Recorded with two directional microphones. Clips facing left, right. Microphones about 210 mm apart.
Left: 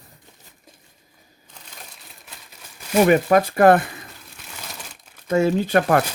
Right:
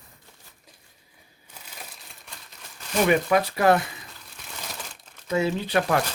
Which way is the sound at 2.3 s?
5° left (ahead or behind).